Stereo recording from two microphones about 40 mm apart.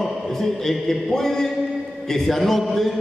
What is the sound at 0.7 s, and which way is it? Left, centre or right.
A man's voice, centre.